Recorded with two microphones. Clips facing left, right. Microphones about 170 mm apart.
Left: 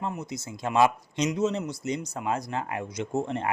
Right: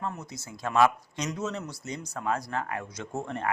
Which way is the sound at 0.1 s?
15° left (ahead or behind).